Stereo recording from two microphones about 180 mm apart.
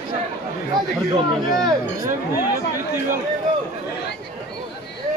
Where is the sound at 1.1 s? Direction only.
20° right (ahead or behind).